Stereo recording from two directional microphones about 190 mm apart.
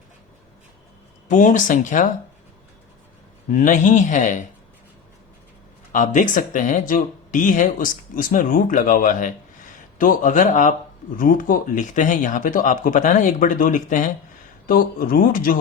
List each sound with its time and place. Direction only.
1.3 s speech: 40° left (ahead or behind)
3.5 s speech: 45° left (ahead or behind)
5.9 s speech: 45° left (ahead or behind)